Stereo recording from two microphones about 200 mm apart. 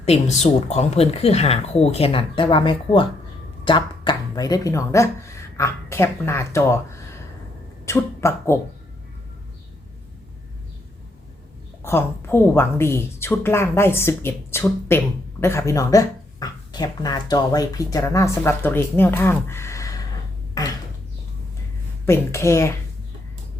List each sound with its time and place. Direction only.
0.0 s speech: 35° left (ahead or behind); by 6.7 s 15° left (ahead or behind)
7.9 s speech: 15° left (ahead or behind)
11.8 s a woman's voice: 10° left (ahead or behind)
22.0 s a woman's voice: 15° left (ahead or behind)